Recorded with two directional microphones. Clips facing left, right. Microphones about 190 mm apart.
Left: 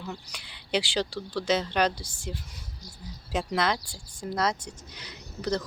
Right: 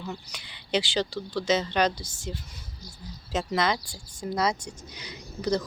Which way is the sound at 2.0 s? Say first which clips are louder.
Right 1 dB; 35° left (ahead or behind).